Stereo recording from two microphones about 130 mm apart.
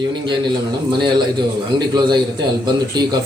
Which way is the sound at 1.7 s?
35° right (ahead or behind).